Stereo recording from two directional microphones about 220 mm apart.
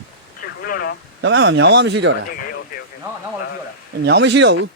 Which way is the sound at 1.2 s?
50° right (ahead or behind).